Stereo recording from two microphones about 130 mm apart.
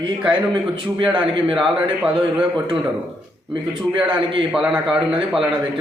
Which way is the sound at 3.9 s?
40° right (ahead or behind).